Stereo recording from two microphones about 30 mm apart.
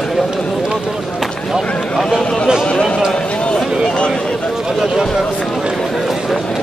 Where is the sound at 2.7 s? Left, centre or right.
Left.